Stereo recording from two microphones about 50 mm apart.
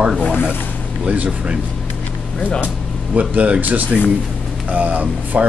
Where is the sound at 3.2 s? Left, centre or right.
Right.